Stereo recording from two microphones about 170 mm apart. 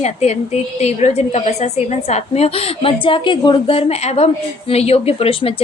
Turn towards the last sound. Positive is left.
turn(degrees=35)  # may be behind; listen again after turning